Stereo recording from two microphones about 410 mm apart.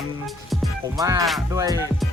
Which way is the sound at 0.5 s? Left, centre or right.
Centre.